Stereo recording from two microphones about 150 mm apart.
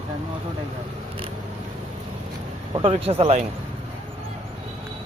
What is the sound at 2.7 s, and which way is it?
Speech, 35° right (ahead or behind).